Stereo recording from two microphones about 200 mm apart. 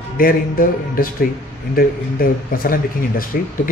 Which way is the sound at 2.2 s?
45° left (ahead or behind).